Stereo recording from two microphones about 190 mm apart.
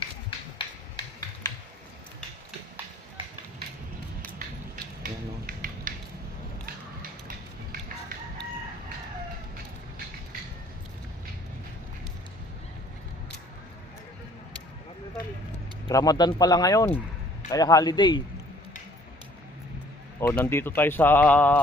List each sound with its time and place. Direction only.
5.0 s finger snapping: 50° right (ahead or behind)
6.6 s a sound: 50° right (ahead or behind)
15.9 s a man's voice: 20° left (ahead or behind)
20.2 s a man's voice: 10° left (ahead or behind)